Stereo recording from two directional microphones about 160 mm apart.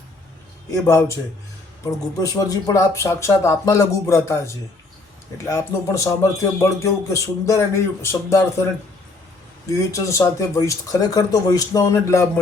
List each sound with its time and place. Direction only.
0.7 s speech: 15° left (ahead or behind)
9.7 s speech: 20° left (ahead or behind)